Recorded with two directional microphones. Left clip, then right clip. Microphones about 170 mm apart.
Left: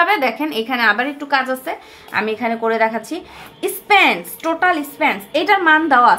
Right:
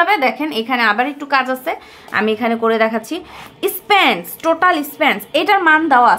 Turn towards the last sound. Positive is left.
turn(degrees=-20)  # may be behind; listen again after turning